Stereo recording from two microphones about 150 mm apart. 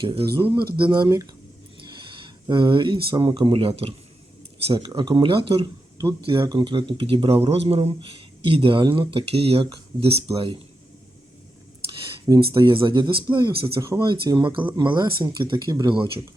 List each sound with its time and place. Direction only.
0.0 s speech: 35° right (ahead or behind)
11.9 s speech: 35° right (ahead or behind)